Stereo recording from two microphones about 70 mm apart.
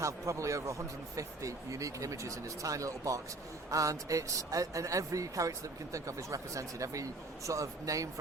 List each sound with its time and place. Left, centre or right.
0.0 s a man's voice: right